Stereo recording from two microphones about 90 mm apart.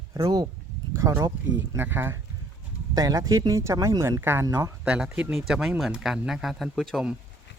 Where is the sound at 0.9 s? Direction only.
35° right (ahead or behind).